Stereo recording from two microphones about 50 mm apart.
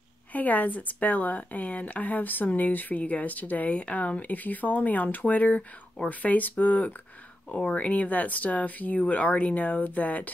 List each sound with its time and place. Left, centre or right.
0.3 s speech: left